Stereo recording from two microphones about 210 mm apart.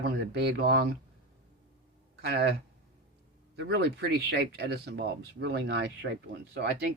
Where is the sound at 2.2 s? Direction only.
55° right (ahead or behind).